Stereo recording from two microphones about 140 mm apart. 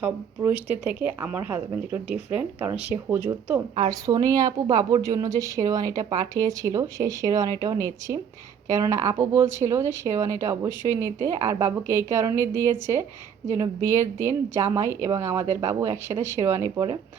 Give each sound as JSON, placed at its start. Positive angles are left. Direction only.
{"t": 0.0, "sound": "speech", "side_deg": -15}
{"t": 3.8, "sound": "speech", "side_deg": -30}